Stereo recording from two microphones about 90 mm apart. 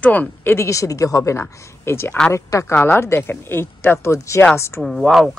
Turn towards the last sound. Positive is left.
turn(degrees=5)  # may be behind; listen again after turning